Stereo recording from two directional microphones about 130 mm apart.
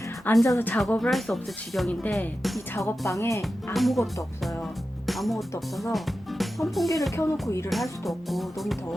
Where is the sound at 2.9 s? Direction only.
25° left (ahead or behind).